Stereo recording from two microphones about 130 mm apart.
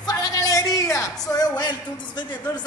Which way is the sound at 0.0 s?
30° left (ahead or behind).